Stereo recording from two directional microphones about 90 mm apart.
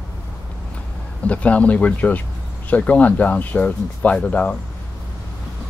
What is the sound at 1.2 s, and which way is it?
Speech, 15° left (ahead or behind).